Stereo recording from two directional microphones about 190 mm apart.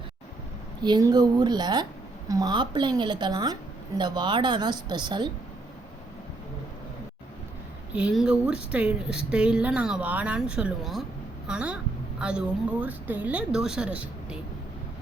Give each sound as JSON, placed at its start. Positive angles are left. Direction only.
{"t": 0.8, "sound": "a woman's voice", "side_deg": -20}
{"t": 7.9, "sound": "speech", "side_deg": -5}